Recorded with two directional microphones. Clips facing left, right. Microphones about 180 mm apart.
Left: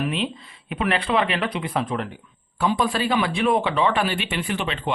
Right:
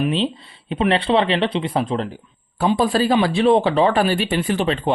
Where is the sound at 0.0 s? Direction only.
30° right (ahead or behind).